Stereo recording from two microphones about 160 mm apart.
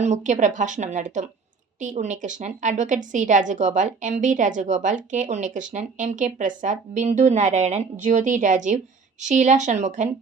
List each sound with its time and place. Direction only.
0.0 s a woman's voice: 50° right (ahead or behind)